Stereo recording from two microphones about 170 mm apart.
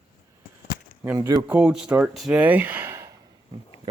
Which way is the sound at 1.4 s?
5° right (ahead or behind).